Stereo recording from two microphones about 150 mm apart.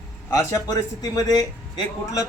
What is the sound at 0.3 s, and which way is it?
Speech, 20° left (ahead or behind).